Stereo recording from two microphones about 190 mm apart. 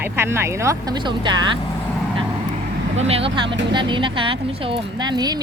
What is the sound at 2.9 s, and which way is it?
Speech, 30° right (ahead or behind).